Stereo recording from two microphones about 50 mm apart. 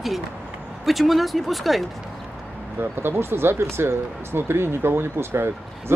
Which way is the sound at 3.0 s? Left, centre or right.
Right.